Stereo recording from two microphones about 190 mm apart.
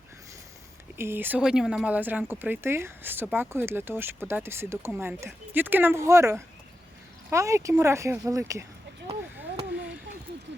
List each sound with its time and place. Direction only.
0.9 s speech: 10° right (ahead or behind)